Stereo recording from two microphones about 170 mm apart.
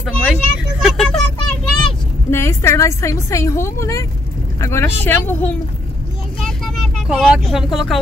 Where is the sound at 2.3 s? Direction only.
15° left (ahead or behind).